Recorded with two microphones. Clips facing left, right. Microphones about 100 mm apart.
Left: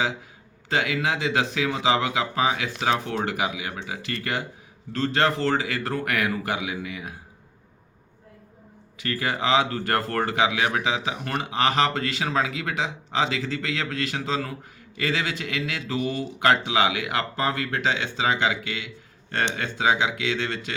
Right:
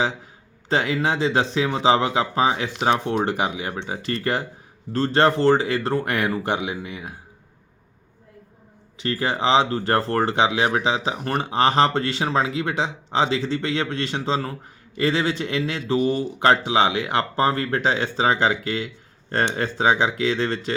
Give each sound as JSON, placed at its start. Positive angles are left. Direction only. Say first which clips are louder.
{"t": 0.7, "sound": "speech", "louder": "right 3 dB", "side_deg": -35}
{"t": 9.0, "sound": "speech", "louder": "right 3 dB", "side_deg": -30}